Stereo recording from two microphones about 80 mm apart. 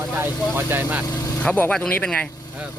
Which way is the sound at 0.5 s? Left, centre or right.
Right.